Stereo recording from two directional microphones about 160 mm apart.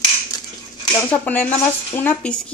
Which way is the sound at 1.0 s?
10° left (ahead or behind).